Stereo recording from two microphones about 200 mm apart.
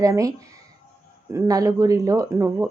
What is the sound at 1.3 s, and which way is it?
A woman's voice, 15° right (ahead or behind).